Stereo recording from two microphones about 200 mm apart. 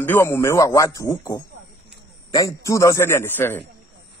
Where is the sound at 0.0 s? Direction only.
10° left (ahead or behind).